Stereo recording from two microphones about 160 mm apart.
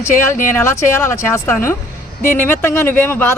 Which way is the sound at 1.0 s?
15° left (ahead or behind).